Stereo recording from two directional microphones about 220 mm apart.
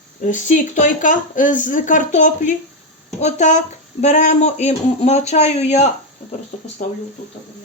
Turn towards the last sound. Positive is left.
turn(degrees=30)  # may be behind; listen again after turning